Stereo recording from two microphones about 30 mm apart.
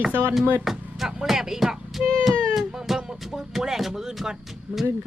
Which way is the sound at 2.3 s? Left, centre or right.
Left.